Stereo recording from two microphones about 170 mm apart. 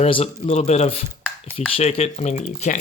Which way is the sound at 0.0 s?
35° left (ahead or behind).